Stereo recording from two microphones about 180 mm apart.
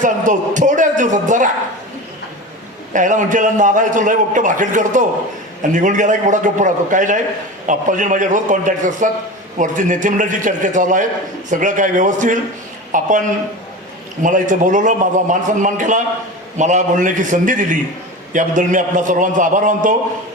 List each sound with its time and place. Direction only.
0.0 s a man's voice: 45° right (ahead or behind)
2.9 s a man's voice: 45° right (ahead or behind)